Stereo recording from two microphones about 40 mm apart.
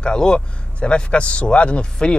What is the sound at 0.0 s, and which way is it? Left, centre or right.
Speech, left.